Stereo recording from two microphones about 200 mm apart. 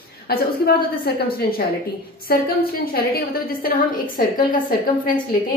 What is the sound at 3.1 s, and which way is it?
A woman's voice, 45° left (ahead or behind).